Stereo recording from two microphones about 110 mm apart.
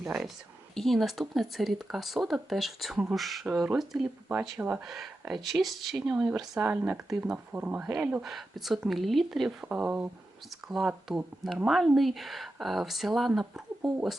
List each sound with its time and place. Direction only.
0.0 s a woman's voice: 5° right (ahead or behind)
4.9 s speech: centre (ahead or behind)
6.6 s speech: 15° right (ahead or behind)
8.2 s speech: centre (ahead or behind)